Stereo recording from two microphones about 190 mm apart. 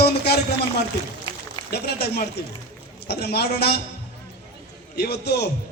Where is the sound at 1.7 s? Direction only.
55° left (ahead or behind).